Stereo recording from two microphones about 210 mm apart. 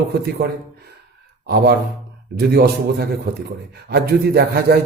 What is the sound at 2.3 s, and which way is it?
A man's voice, 50° right (ahead or behind).